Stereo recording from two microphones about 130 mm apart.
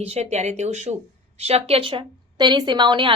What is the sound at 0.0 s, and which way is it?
Speech, 55° right (ahead or behind).